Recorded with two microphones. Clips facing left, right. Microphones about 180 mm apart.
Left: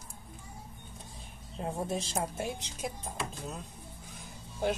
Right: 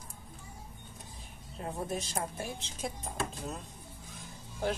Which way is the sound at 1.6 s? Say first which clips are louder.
Left 2 dB; 25° left (ahead or behind).